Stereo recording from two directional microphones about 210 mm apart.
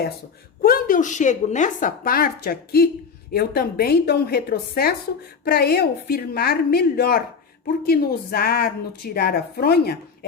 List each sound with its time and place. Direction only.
0.6 s a woman's voice: 45° left (ahead or behind)